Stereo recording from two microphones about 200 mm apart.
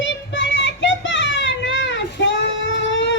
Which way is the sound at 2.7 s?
65° left (ahead or behind).